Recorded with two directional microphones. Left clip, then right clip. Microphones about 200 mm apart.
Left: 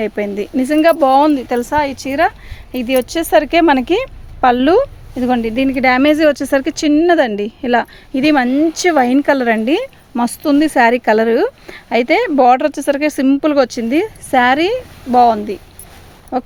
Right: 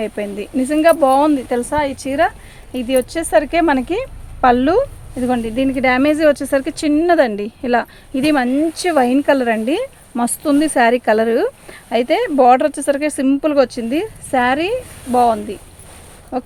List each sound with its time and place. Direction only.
0.0 s speech: 40° left (ahead or behind)